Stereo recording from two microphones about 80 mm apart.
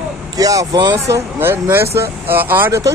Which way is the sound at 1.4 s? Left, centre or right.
Right.